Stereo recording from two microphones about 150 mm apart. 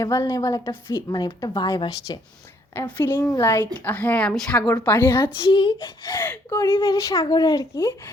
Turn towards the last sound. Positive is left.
turn(degrees=25)  # may be behind; listen again after turning